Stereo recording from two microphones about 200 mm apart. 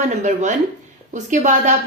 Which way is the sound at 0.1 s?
35° right (ahead or behind).